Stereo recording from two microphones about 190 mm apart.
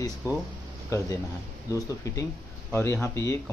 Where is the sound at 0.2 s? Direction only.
15° left (ahead or behind).